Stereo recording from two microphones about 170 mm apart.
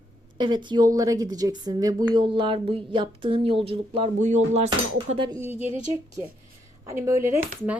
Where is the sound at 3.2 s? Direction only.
30° right (ahead or behind).